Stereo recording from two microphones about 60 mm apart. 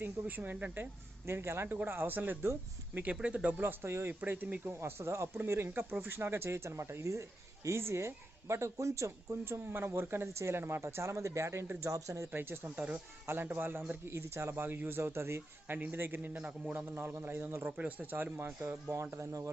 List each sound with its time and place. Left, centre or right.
0.0 s speech: right
1.3 s speech: right
1.6 s a man's voice: right
3.6 s a man's voice: right
4.6 s speech: right
12.3 s speech: right
14.5 s speech: right
15.6 s speech: right
16.4 s a man's voice: right
17.2 s speech: right